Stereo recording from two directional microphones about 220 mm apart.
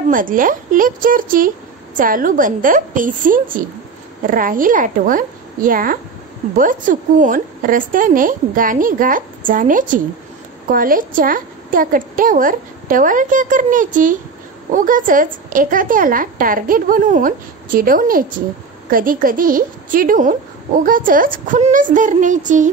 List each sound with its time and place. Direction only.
0.1 s a woman's voice: 40° right (ahead or behind)